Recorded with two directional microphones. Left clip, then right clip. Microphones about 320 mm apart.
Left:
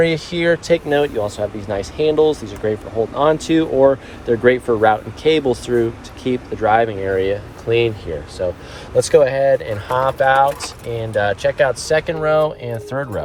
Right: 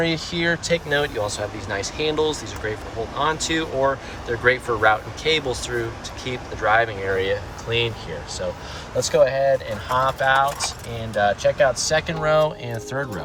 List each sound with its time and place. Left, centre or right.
0.0 s speech: centre